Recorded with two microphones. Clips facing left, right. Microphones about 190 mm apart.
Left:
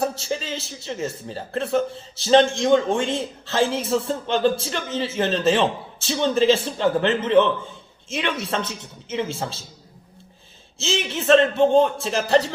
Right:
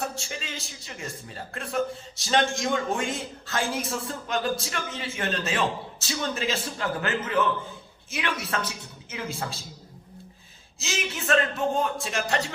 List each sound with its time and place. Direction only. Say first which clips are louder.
0.0 s a man's voice: left 8 dB; 30° left (ahead or behind)
10.8 s a man's voice: left 8 dB; 25° left (ahead or behind)